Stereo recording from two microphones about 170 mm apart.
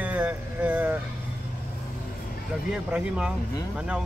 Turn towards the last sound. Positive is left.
turn(degrees=-5)  # may be behind; listen again after turning